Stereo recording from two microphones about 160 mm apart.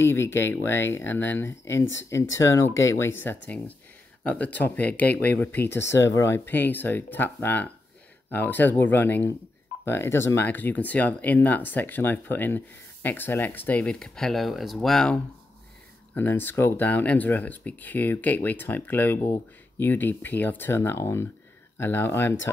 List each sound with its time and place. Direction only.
0.0 s speech: 15° left (ahead or behind)
16.2 s speech: 10° left (ahead or behind)